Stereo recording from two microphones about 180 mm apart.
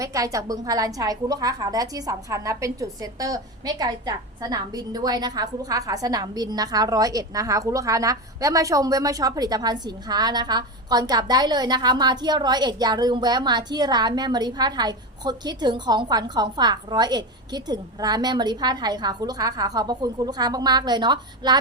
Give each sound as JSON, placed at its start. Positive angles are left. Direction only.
{"t": 0.0, "sound": "a woman's voice", "side_deg": -20}